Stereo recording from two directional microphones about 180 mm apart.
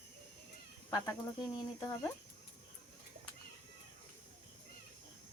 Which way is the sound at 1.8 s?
15° left (ahead or behind).